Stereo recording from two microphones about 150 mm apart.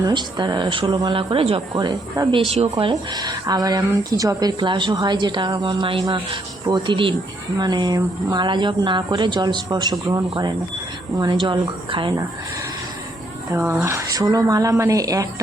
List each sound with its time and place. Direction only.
0.0 s speech: 30° right (ahead or behind)
2.5 s speech: 40° right (ahead or behind)
2.9 s speech: 25° right (ahead or behind)
11.4 s speech: 30° right (ahead or behind)
13.5 s speech: 15° right (ahead or behind)